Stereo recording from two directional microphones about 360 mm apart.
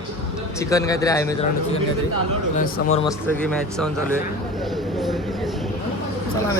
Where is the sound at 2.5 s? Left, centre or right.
Left.